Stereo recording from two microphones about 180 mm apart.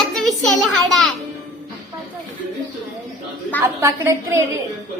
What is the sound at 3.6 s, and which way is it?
Speech, 15° right (ahead or behind).